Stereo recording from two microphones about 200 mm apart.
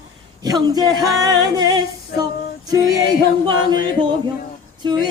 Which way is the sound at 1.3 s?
20° right (ahead or behind).